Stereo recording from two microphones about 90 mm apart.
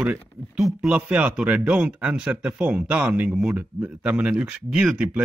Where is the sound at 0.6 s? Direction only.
5° right (ahead or behind).